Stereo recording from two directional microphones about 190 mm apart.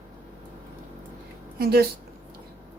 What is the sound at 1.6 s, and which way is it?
Speech, 55° right (ahead or behind).